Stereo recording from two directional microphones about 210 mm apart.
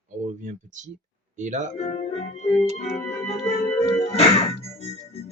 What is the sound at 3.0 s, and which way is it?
Organ, 30° left (ahead or behind).